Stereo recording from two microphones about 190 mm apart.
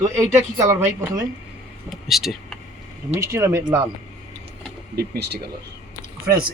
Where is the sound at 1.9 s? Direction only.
Centre (ahead or behind).